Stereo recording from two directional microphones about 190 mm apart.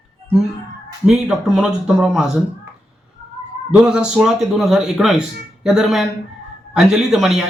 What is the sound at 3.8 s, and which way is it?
A man's voice, 5° right (ahead or behind).